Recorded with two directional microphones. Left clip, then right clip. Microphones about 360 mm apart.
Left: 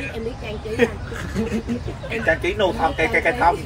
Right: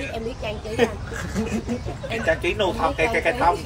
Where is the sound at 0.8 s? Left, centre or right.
Right.